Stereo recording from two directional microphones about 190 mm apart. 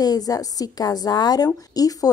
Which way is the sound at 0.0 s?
20° left (ahead or behind).